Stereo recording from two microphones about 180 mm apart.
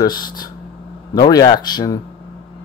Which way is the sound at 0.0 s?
25° left (ahead or behind).